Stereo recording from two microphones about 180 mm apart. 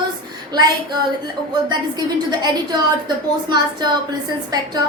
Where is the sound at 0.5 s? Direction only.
25° right (ahead or behind).